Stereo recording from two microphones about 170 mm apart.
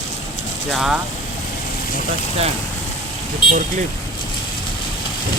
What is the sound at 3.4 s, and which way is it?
Speech, 30° left (ahead or behind).